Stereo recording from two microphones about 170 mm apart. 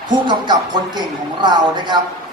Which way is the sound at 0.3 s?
25° right (ahead or behind).